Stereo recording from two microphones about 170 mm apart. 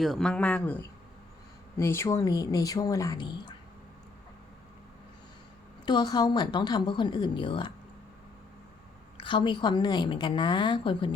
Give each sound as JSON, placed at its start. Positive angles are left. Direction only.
{"t": 0.0, "sound": "a woman's voice", "side_deg": 0}
{"t": 5.8, "sound": "a woman's voice", "side_deg": 25}
{"t": 9.1, "sound": "a woman's voice", "side_deg": 30}